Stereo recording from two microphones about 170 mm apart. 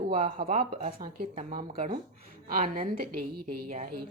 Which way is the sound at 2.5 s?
50° right (ahead or behind).